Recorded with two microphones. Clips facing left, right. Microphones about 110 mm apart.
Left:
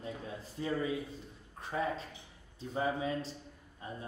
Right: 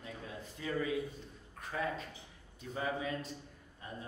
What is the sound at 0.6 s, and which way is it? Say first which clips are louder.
A man's voice: left 1 dB; 30° left (ahead or behind).